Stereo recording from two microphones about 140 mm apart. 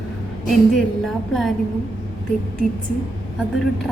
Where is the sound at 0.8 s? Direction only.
Centre (ahead or behind).